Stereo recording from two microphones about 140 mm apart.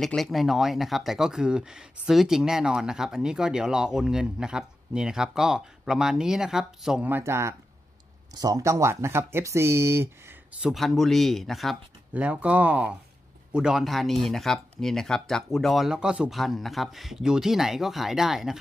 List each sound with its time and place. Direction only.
0.0 s speech: centre (ahead or behind)
7.1 s speech: 15° right (ahead or behind)
10.6 s speech: centre (ahead or behind)
12.1 s speech: 10° right (ahead or behind)